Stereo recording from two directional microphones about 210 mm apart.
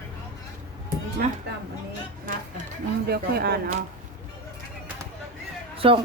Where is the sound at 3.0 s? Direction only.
45° right (ahead or behind).